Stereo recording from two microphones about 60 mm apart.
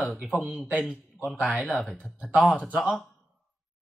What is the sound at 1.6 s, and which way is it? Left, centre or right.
Speech, centre.